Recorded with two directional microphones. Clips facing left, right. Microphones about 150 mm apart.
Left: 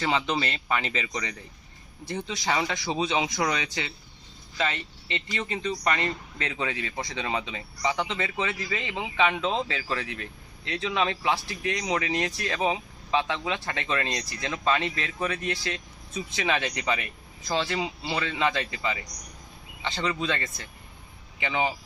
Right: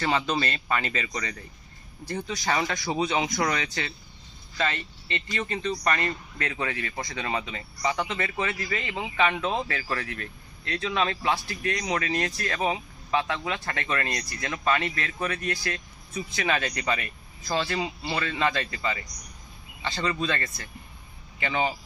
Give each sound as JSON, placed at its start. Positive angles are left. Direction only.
{"t": 0.0, "sound": "a man's voice", "side_deg": 15}